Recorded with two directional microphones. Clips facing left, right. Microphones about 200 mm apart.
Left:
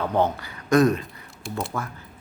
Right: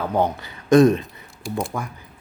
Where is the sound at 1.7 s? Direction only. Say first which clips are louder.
Right 2 dB; 10° right (ahead or behind).